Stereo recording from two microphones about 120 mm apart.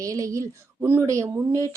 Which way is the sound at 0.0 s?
30° right (ahead or behind).